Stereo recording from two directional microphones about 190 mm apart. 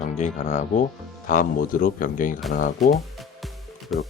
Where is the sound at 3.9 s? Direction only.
Centre (ahead or behind).